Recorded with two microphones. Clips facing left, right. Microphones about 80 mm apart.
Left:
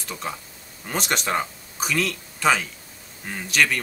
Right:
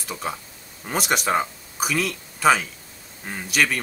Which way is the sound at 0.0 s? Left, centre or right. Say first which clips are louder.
Right 2 dB; centre.